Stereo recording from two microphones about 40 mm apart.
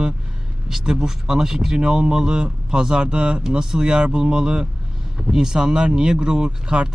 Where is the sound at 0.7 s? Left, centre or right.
Centre.